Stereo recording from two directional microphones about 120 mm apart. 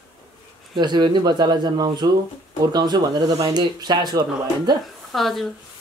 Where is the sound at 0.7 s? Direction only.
40° right (ahead or behind).